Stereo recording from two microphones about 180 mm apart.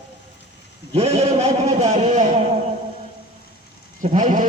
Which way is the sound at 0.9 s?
35° right (ahead or behind).